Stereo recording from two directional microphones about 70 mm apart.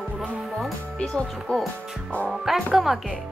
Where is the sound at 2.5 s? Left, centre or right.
Centre.